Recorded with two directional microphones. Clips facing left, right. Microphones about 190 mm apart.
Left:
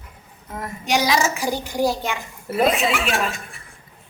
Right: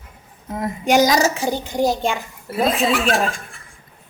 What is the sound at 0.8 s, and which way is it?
Speech, 45° right (ahead or behind).